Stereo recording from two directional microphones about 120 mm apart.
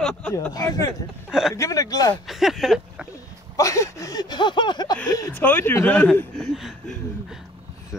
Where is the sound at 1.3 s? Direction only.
5° right (ahead or behind).